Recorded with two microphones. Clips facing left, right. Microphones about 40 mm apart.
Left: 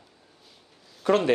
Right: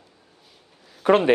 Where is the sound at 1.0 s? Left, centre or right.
Right.